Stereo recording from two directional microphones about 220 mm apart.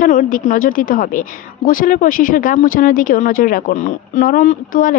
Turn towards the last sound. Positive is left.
turn(degrees=35)  # may be behind; listen again after turning